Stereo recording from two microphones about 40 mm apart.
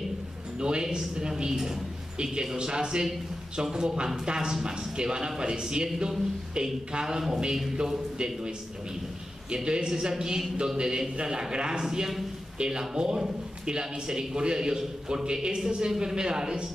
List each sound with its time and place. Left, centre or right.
0.6 s a woman's voice: right
9.7 s a woman's voice: centre